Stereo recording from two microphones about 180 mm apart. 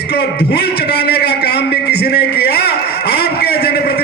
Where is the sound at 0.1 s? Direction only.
65° left (ahead or behind).